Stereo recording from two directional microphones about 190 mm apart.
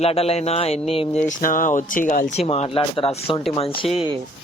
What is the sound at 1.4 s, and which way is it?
Speech, 45° left (ahead or behind).